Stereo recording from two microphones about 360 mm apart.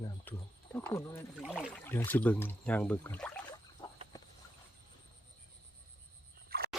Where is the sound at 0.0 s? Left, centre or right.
Centre.